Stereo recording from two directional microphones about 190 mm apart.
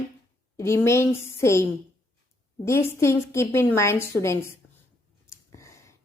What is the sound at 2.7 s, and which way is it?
A woman's voice, 15° left (ahead or behind).